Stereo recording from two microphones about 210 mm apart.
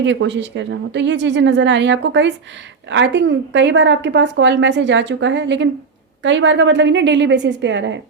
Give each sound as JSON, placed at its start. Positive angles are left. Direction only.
{"t": 0.0, "sound": "a woman's voice", "side_deg": -60}